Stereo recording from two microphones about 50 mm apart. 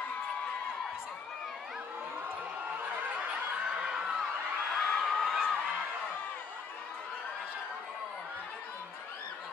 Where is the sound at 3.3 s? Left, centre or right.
Centre.